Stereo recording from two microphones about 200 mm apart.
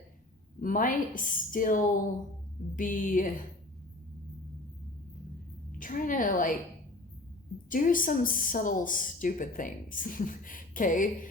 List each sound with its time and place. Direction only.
0.6 s a woman's voice: 40° left (ahead or behind)
5.8 s speech: 40° left (ahead or behind)
7.7 s speech: 40° left (ahead or behind)